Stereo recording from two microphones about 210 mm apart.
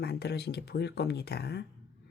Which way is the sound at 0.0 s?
50° left (ahead or behind).